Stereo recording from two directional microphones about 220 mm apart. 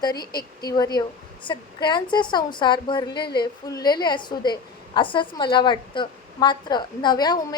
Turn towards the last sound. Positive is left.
turn(degrees=20)  # may be behind; listen again after turning